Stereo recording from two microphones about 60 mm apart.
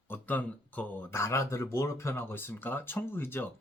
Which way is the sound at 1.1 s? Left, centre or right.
Left.